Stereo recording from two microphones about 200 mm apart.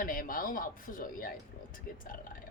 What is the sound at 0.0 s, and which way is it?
A man's voice, 45° left (ahead or behind).